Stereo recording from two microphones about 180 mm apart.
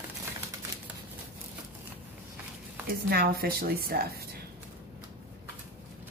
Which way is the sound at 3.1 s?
55° right (ahead or behind).